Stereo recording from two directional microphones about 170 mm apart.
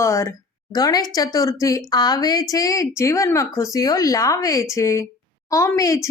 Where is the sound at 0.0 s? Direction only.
15° left (ahead or behind).